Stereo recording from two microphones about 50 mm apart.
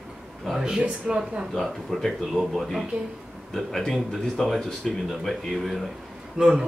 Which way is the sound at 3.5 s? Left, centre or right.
Centre.